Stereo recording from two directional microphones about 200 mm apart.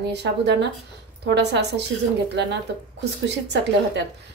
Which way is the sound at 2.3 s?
60° right (ahead or behind).